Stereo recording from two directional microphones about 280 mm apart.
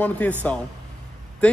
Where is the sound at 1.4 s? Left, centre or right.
Centre.